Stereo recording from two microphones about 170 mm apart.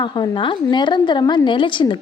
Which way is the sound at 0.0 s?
25° left (ahead or behind).